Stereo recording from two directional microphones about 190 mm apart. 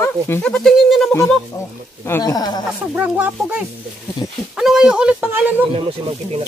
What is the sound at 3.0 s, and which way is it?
Speech, 10° right (ahead or behind).